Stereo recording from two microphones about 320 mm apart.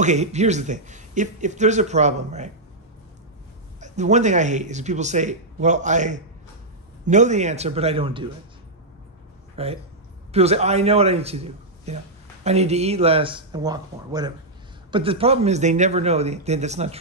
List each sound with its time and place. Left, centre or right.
0.0 s a man's voice: right
3.8 s a man's voice: right
9.6 s a man's voice: centre